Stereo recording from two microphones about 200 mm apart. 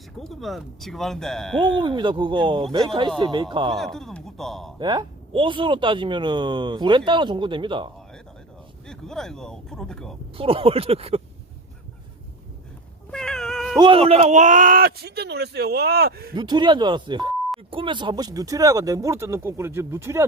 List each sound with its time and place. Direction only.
0.2 s speech: centre (ahead or behind)
1.8 s speech: 25° right (ahead or behind)
3.8 s speech: centre (ahead or behind)
4.8 s speech: 20° right (ahead or behind)
8.9 s speech: centre (ahead or behind)
10.3 s speech: 25° right (ahead or behind)
13.1 s cat: 5° left (ahead or behind)
13.7 s speech: 25° right (ahead or behind); by 16.3 s 50° right (ahead or behind)
16.3 s speech: 20° right (ahead or behind)